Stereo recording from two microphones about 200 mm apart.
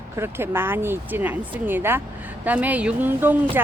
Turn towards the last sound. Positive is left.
turn(degrees=-10)  # may be behind; listen again after turning